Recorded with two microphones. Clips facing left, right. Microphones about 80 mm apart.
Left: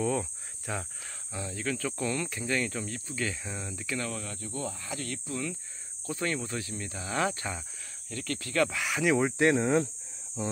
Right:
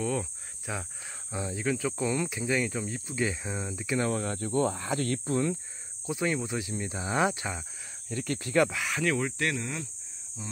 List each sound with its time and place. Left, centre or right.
0.0 s cricket: centre
1.3 s speech: right
4.1 s speech: right
6.0 s speech: centre
8.6 s speech: centre
9.1 s speech: left